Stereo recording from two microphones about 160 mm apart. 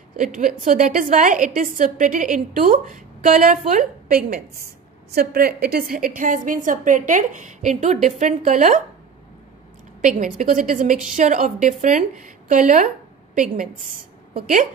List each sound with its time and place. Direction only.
0.2 s a woman's voice: 55° right (ahead or behind)
5.1 s a woman's voice: 70° right (ahead or behind); by 8.8 s 55° right (ahead or behind)
10.0 s a woman's voice: 50° right (ahead or behind)